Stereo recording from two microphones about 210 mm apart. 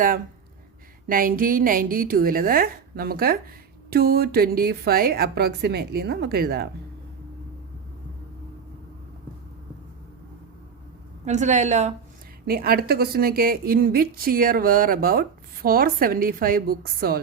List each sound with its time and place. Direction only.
1.0 s a woman's voice: 40° right (ahead or behind)
11.3 s a woman's voice: 35° right (ahead or behind)
12.5 s a woman's voice: 45° right (ahead or behind)